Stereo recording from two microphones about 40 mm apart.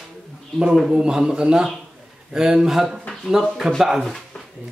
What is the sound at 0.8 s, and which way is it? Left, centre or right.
Speech, centre.